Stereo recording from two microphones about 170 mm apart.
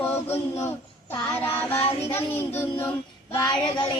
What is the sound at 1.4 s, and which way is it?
Child singing, 10° left (ahead or behind).